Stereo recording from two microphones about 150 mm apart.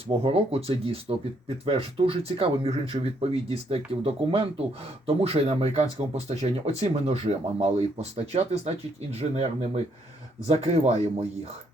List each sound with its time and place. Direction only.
0.2 s speech: 40° right (ahead or behind)